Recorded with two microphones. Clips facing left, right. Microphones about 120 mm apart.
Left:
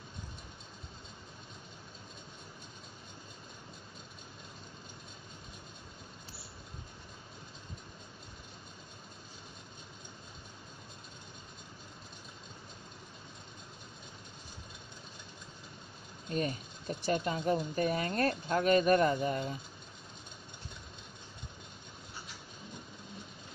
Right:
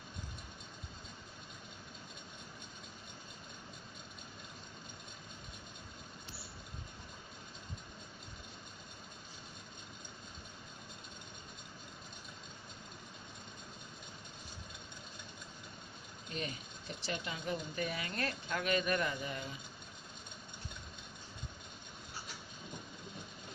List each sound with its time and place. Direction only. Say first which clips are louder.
16.3 s speech: left 8 dB; 40° left (ahead or behind)